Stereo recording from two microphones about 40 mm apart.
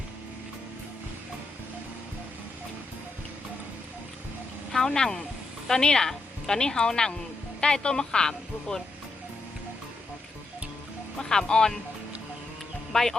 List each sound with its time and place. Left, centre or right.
4.9 s speech: centre
11.2 s speech: centre
12.9 s speech: centre